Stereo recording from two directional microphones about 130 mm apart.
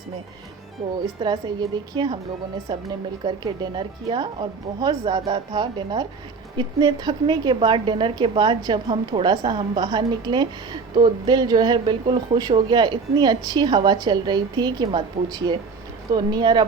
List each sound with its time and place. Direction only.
0.8 s a woman's voice: 30° right (ahead or behind)